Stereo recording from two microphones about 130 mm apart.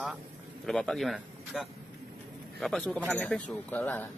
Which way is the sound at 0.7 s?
Centre (ahead or behind).